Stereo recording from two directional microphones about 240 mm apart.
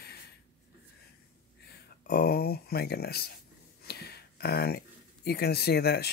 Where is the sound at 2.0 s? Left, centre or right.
Left.